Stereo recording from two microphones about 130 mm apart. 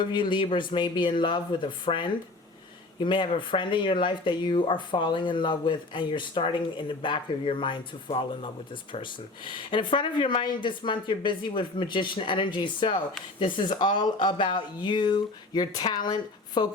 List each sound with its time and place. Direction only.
0.0 s speech: 40° left (ahead or behind)